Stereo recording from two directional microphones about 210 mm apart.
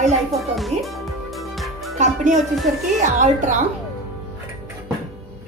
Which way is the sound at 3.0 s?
35° right (ahead or behind).